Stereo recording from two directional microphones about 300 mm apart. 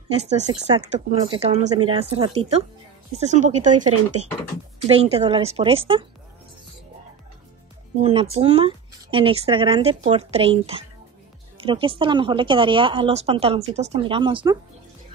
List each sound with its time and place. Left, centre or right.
0.1 s speech: right
4.8 s speech: centre
7.9 s speech: centre